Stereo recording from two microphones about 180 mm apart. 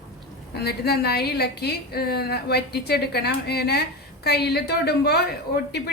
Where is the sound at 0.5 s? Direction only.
60° left (ahead or behind).